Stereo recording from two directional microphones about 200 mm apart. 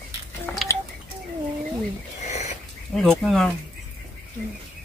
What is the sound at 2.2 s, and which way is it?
Cat, 35° left (ahead or behind).